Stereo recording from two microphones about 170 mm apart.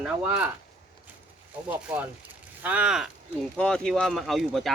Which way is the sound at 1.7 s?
10° right (ahead or behind).